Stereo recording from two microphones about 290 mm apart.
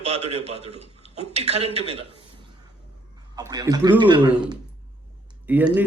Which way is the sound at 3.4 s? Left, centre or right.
Centre.